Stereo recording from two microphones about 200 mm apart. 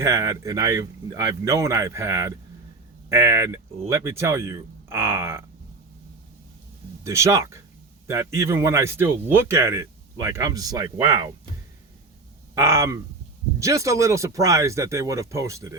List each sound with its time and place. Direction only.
0.0 s speech: 15° right (ahead or behind)
7.0 s speech: 15° right (ahead or behind)
12.5 s speech: 15° right (ahead or behind)